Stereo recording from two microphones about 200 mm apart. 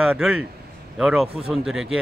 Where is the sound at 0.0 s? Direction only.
5° right (ahead or behind).